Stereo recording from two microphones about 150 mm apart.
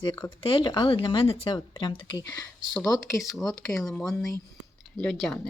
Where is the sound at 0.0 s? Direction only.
30° left (ahead or behind).